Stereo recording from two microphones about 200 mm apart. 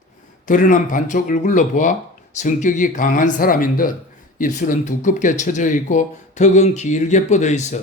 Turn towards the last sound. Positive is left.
turn(degrees=35)  # may be behind; listen again after turning